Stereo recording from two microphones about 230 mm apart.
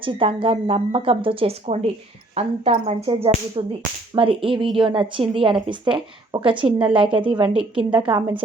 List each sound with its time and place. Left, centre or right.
0.0 s a woman's voice: right
3.1 s whip: centre
3.6 s a woman's voice: centre